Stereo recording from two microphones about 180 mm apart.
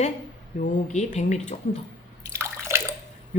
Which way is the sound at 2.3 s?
15° right (ahead or behind).